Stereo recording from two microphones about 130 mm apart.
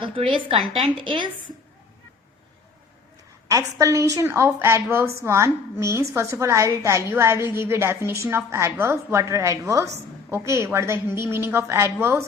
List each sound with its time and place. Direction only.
0.0 s a woman's voice: 40° right (ahead or behind)
3.5 s a woman's voice: 25° right (ahead or behind)